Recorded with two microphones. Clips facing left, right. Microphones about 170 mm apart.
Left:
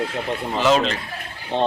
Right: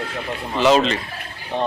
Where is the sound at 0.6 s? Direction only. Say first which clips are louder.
Right 3 dB; centre (ahead or behind).